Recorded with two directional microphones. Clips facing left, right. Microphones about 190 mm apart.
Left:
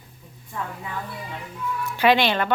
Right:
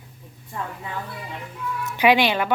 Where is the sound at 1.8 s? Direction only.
15° right (ahead or behind).